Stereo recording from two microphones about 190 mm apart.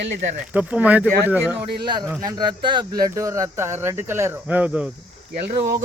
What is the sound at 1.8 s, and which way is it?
Speech, 25° right (ahead or behind).